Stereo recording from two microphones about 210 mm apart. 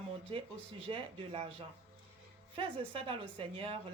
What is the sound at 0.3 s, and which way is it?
Speech, 25° right (ahead or behind).